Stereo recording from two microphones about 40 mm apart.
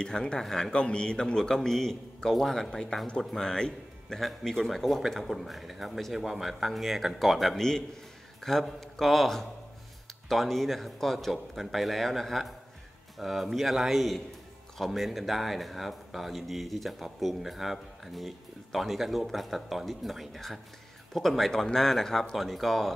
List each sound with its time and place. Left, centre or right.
0.0 s a man's voice: centre
2.7 s a man's voice: centre
4.2 s a man's voice: centre